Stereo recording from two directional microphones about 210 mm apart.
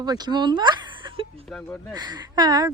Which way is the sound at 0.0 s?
20° right (ahead or behind).